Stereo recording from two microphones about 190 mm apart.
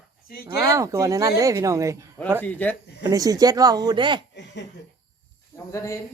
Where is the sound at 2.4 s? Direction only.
10° left (ahead or behind).